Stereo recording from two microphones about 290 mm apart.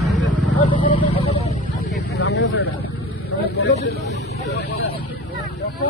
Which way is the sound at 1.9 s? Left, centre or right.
Left.